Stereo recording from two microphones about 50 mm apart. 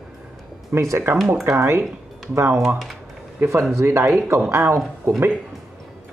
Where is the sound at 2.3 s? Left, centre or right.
Right.